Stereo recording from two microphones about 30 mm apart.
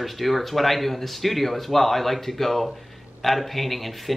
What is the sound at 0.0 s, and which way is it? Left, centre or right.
Speech, centre.